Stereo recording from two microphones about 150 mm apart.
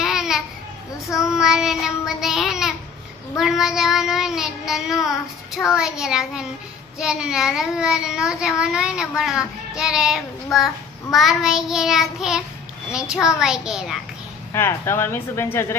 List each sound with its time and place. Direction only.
0.0 s babbling: 5° right (ahead or behind)
1.1 s child singing: 5° right (ahead or behind)
3.3 s a child's voice: centre (ahead or behind)
14.5 s speech: 15° left (ahead or behind)